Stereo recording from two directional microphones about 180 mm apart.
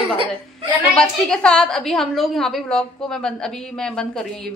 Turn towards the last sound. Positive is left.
turn(degrees=5)  # may be behind; listen again after turning